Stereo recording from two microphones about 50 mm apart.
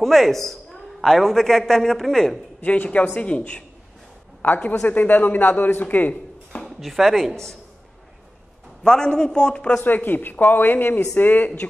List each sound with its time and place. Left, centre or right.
0.0 s a woman's voice: centre
2.6 s speech: left
4.4 s a woman's voice: left
6.6 s speech: centre
8.8 s a man's voice: centre
9.8 s a man's voice: left